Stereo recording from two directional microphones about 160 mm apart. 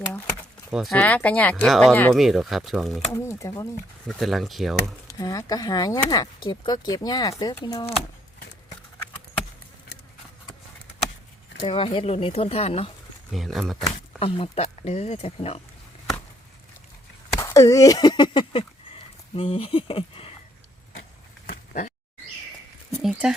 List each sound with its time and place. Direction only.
0.7 s speech: centre (ahead or behind)
3.1 s speech: 15° left (ahead or behind)
4.0 s speech: centre (ahead or behind)
5.1 s speech: 20° left (ahead or behind)
11.6 s speech: 35° left (ahead or behind)
13.3 s speech: centre (ahead or behind)
14.2 s speech: 35° left (ahead or behind)
17.4 s speech: 20° left (ahead or behind); by 20.3 s 35° left (ahead or behind)
21.4 s a sound: 55° left (ahead or behind)
22.9 s speech: centre (ahead or behind)